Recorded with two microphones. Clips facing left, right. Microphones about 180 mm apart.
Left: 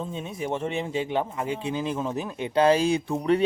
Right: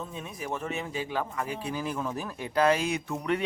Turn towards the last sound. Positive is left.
turn(degrees=30)  # may be behind; listen again after turning